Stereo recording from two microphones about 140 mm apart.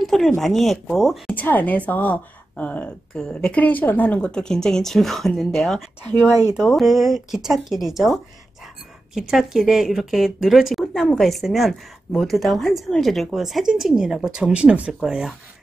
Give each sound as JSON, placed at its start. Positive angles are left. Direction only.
{"t": 0.0, "sound": "speech", "side_deg": 0}
{"t": 1.3, "sound": "a woman's voice", "side_deg": 10}